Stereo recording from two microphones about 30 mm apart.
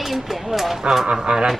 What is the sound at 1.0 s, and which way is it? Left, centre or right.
Speech, right.